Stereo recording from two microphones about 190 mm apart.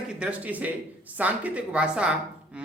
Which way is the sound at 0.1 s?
5° right (ahead or behind).